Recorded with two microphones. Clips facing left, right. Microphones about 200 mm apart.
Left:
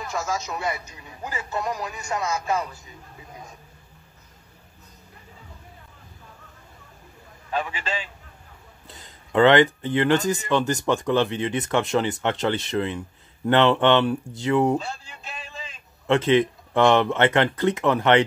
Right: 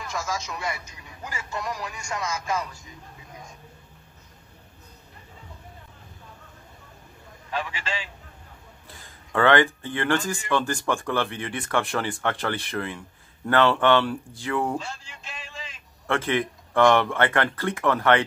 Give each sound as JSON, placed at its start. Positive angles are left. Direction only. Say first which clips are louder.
{"t": 0.0, "sound": "a man's voice", "louder": "left 3 dB", "side_deg": 35}
{"t": 8.8, "sound": "speech", "louder": "left 1 dB", "side_deg": 20}
{"t": 16.1, "sound": "speech", "louder": "left 6 dB", "side_deg": 20}